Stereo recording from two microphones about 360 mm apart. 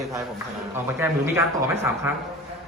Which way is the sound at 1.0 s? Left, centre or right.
Centre.